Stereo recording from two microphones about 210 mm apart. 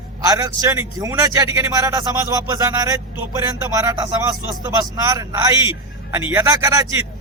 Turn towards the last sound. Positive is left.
turn(degrees=-15)  # may be behind; listen again after turning